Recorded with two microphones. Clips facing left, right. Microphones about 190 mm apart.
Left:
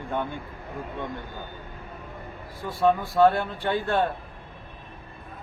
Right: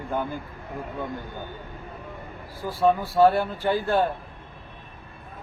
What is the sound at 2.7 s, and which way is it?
A man's voice, centre (ahead or behind).